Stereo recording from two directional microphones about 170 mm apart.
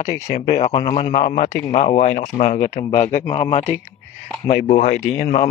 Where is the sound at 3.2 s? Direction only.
20° left (ahead or behind).